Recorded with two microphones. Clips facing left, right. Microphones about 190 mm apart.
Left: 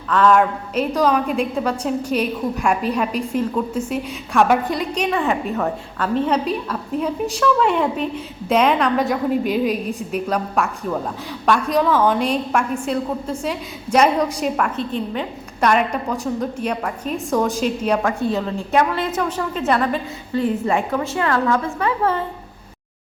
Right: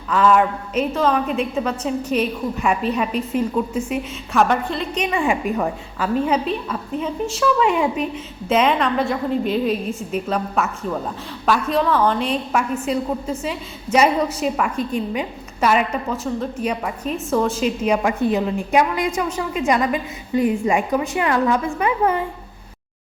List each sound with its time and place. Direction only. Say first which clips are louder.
0.1 s a woman's voice: left 1 dB; 5° right (ahead or behind)
4.4 s a woman's voice: left 3 dB; 5° left (ahead or behind)
5.1 s a woman's voice: right 4 dB; 10° right (ahead or behind)